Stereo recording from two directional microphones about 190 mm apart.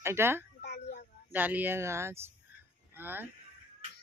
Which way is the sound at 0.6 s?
60° left (ahead or behind).